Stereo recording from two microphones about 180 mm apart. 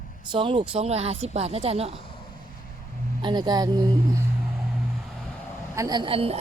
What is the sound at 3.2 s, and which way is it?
Speech, 25° right (ahead or behind).